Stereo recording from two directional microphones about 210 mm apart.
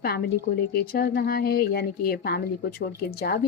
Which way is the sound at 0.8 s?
50° left (ahead or behind).